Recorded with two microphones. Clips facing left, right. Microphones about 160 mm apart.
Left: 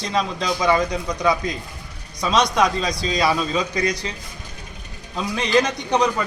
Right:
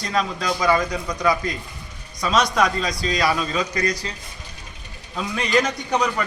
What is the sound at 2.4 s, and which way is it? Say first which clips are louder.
Speech: left 3 dB; 20° left (ahead or behind).